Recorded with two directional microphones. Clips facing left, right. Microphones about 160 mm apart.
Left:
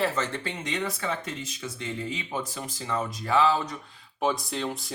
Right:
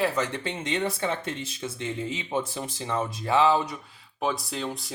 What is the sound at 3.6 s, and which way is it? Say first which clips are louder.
Speech: even; 5° right (ahead or behind).